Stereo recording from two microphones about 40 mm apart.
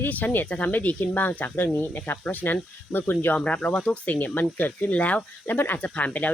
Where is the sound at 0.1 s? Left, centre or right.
Left.